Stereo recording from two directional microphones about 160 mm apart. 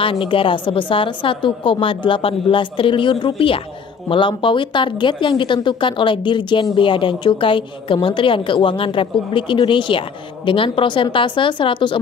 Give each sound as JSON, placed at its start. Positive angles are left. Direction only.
{"t": 0.0, "sound": "speech", "side_deg": 35}